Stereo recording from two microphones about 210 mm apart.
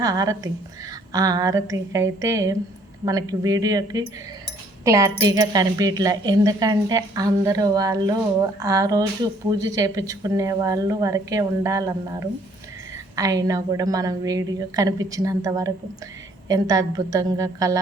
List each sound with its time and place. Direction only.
0.0 s a woman's voice: 15° right (ahead or behind)